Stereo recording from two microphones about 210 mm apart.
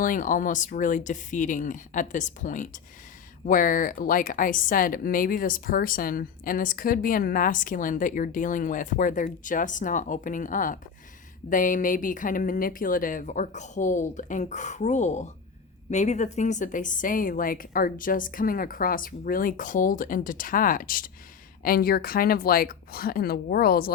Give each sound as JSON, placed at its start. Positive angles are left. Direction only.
{"t": 0.0, "sound": "a woman's voice", "side_deg": 40}